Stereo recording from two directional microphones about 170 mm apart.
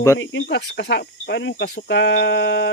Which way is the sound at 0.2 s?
90° left.